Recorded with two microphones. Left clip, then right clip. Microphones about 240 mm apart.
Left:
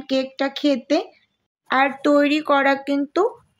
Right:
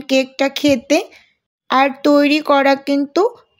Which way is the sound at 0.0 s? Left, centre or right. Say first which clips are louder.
Right 6 dB; right.